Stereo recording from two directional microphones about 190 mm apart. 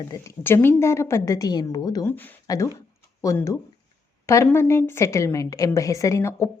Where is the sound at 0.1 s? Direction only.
10° left (ahead or behind).